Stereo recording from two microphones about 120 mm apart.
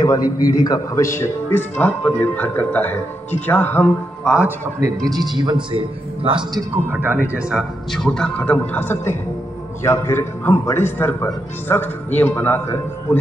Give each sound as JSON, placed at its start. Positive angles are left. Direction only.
{"t": 0.0, "sound": "a man's voice", "side_deg": 30}
{"t": 4.2, "sound": "a man's voice", "side_deg": -5}
{"t": 4.7, "sound": "a man's voice", "side_deg": -30}
{"t": 6.9, "sound": "speech", "side_deg": -15}
{"t": 7.9, "sound": "a man's voice", "side_deg": 5}